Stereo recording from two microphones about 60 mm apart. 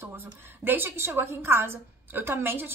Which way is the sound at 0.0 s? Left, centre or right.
Right.